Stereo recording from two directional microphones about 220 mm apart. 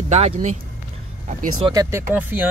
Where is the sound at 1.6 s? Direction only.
15° right (ahead or behind).